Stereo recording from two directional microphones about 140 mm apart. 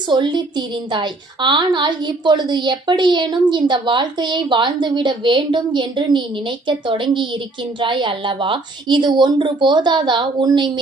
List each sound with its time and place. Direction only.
0.1 s a woman's voice: 30° right (ahead or behind)